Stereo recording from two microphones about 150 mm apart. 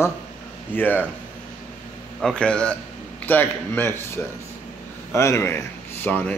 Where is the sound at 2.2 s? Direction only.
5° left (ahead or behind).